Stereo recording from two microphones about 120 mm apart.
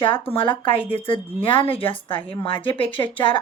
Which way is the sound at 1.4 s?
50° left (ahead or behind).